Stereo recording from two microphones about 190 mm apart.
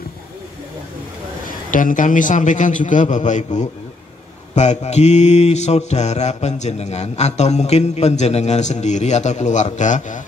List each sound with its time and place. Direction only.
1.7 s mantra: 45° left (ahead or behind)